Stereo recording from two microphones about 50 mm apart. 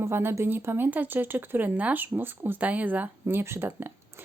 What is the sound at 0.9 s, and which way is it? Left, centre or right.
Speech, right.